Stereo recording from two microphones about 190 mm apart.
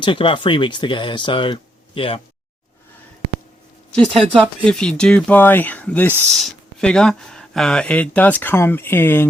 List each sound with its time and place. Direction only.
0.0 s speech: 25° left (ahead or behind)
3.9 s speech: 5° left (ahead or behind)